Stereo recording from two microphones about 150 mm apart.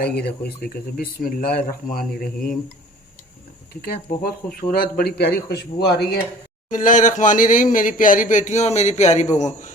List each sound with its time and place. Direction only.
0.0 s speech: 90° left; by 2.6 s 75° left (ahead or behind)
3.8 s a man's voice: 85° left
6.7 s speech: 60° left (ahead or behind)